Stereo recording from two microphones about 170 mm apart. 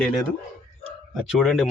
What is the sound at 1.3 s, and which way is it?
Speech, centre (ahead or behind).